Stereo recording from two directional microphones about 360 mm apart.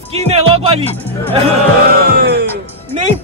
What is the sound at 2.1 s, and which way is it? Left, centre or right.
Music, right.